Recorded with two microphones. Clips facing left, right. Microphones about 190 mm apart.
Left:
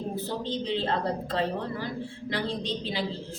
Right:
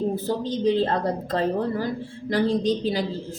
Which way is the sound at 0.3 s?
45° right (ahead or behind).